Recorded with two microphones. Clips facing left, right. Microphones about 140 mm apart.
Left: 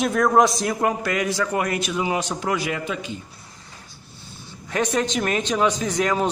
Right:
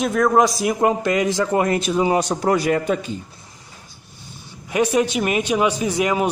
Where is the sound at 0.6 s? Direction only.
20° right (ahead or behind); by 3.1 s 45° right (ahead or behind).